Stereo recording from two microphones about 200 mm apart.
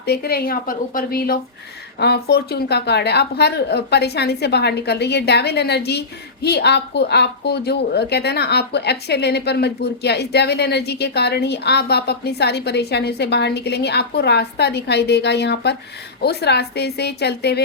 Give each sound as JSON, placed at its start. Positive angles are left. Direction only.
{"t": 0.0, "sound": "a woman's voice", "side_deg": 50}